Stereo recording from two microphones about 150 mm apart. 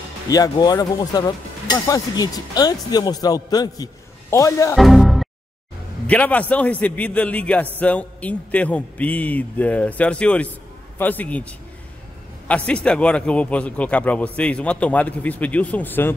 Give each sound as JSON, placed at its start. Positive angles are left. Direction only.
{"t": 0.3, "sound": "a man's voice", "side_deg": 25}
{"t": 4.7, "sound": "a man's voice", "side_deg": 0}
{"t": 12.4, "sound": "a man's voice", "side_deg": 10}